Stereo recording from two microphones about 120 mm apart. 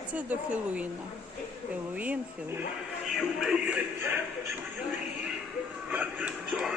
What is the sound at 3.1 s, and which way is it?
Speech, centre (ahead or behind).